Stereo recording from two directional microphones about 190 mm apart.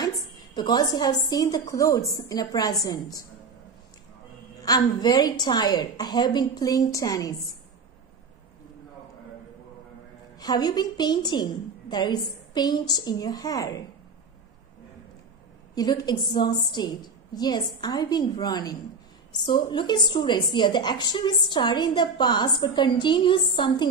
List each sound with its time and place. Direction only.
0.6 s a woman's voice: 20° left (ahead or behind)
4.6 s a woman's voice: 20° left (ahead or behind)
10.4 s a woman's voice: 20° left (ahead or behind)
15.7 s a woman's voice: 20° left (ahead or behind)